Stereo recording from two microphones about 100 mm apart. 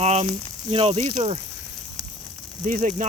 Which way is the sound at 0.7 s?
80° right.